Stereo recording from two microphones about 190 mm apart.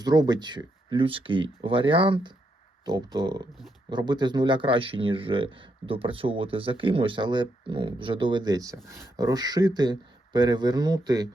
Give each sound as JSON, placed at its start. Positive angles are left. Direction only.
{"t": 0.0, "sound": "speech", "side_deg": -20}